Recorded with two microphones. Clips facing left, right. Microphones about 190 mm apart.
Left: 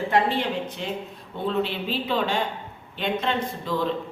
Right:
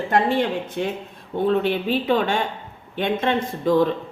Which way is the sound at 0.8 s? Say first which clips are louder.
Right 5 dB; 55° right (ahead or behind).